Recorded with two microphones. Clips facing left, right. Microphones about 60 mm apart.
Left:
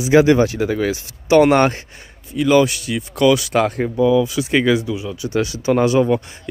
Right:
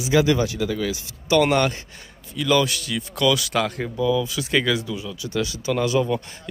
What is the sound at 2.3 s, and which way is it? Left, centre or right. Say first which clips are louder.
Speech: left 6 dB; left.